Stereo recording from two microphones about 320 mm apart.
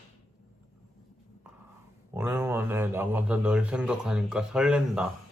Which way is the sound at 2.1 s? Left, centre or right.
Centre.